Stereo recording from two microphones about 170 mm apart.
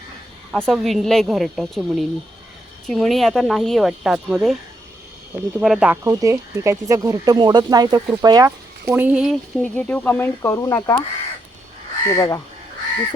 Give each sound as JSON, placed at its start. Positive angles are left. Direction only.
{"t": 0.5, "sound": "speech", "side_deg": 5}
{"t": 8.9, "sound": "speech", "side_deg": -10}
{"t": 9.7, "sound": "speech", "side_deg": 10}
{"t": 12.0, "sound": "speech", "side_deg": 20}